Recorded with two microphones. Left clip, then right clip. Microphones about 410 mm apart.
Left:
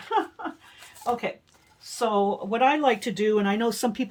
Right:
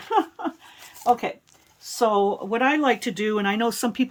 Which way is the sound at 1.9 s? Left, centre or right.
Centre.